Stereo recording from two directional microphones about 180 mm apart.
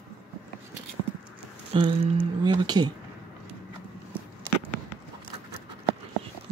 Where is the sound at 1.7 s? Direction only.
35° right (ahead or behind).